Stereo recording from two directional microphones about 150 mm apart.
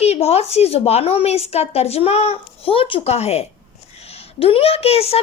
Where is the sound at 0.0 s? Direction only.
45° left (ahead or behind).